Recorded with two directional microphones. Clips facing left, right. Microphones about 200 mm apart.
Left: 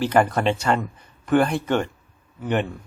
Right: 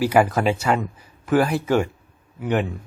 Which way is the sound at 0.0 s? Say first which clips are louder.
Right 1 dB; 5° right (ahead or behind).